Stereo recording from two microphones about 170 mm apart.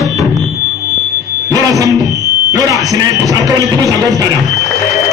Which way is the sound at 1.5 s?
20° right (ahead or behind).